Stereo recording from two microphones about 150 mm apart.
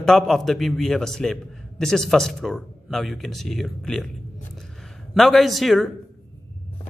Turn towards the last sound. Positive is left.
turn(degrees=0)  # may be behind; listen again after turning